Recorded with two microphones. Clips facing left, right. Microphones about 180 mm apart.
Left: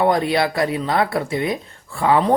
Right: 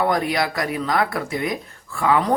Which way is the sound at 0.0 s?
25° left (ahead or behind).